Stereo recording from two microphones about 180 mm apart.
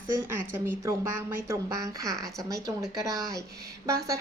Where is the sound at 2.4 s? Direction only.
20° right (ahead or behind).